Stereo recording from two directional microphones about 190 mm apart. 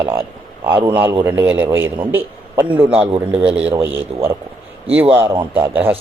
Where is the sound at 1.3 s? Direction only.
10° right (ahead or behind).